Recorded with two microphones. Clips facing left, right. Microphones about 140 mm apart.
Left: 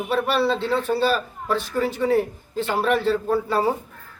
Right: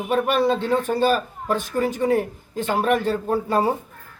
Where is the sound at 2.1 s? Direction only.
45° right (ahead or behind).